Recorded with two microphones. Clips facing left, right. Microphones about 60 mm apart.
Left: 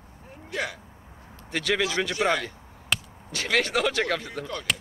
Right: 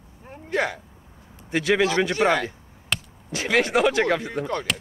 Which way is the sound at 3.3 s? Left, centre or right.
Centre.